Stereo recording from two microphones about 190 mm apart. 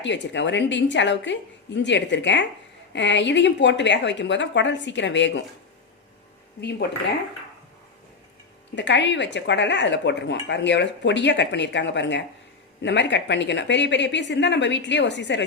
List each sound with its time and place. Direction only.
0.0 s speech: 70° left (ahead or behind)
8.7 s speech: 70° left (ahead or behind)